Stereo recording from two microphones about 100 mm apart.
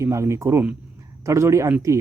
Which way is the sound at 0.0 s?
30° right (ahead or behind).